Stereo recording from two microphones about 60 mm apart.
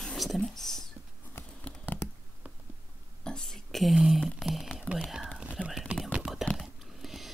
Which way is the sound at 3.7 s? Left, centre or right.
Centre.